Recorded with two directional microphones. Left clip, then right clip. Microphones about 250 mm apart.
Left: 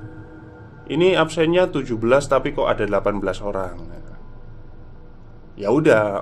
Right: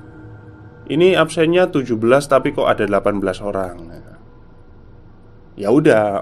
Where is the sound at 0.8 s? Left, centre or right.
Centre.